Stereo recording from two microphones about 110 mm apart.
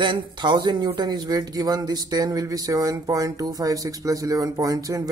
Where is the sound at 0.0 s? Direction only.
45° right (ahead or behind).